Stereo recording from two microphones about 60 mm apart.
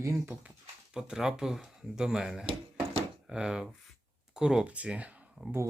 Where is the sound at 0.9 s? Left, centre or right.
Centre.